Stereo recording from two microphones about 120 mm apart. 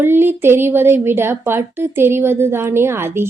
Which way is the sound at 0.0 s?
20° right (ahead or behind).